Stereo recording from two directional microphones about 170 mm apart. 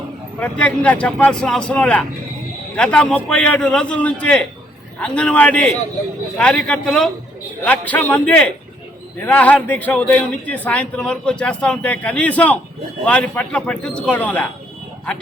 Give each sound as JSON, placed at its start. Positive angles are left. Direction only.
{"t": 0.3, "sound": "a man's voice", "side_deg": 5}